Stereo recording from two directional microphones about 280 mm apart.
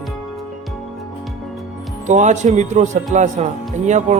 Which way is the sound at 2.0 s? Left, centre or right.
Right.